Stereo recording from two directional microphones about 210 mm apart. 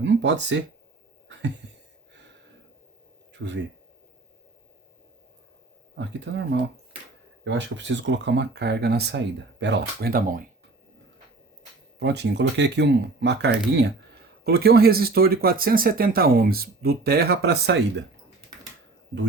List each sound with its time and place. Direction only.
0.0 s speech: 60° right (ahead or behind)
2.1 s a sound: 60° right (ahead or behind)
3.3 s speech: 60° right (ahead or behind)
6.0 s speech: 60° right (ahead or behind); by 10.4 s 40° right (ahead or behind)
11.9 s speech: 55° right (ahead or behind)